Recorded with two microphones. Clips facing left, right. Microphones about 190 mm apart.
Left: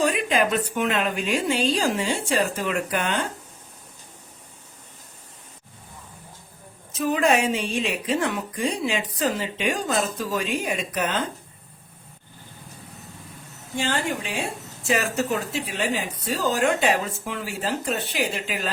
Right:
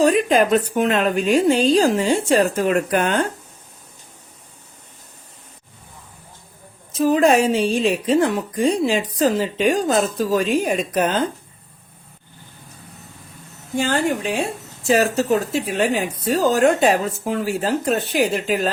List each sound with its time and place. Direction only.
0.0 s a woman's voice: 40° right (ahead or behind)
6.9 s a woman's voice: 35° right (ahead or behind)
13.7 s speech: 45° right (ahead or behind)